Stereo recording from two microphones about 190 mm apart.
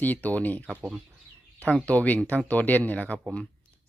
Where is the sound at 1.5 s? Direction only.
5° left (ahead or behind).